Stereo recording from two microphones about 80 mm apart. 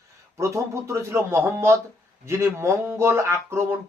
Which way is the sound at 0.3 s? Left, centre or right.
Right.